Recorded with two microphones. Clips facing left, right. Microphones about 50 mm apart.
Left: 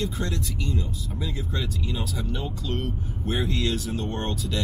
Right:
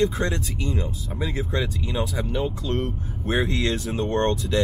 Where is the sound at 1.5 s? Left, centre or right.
Centre.